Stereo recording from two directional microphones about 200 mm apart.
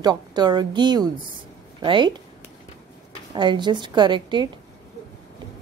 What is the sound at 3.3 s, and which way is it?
Speech, 25° right (ahead or behind).